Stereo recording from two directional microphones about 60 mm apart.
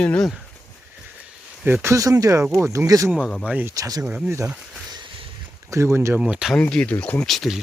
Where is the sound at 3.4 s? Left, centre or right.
Right.